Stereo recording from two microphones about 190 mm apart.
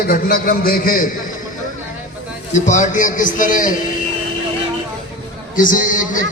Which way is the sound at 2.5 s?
40° left (ahead or behind).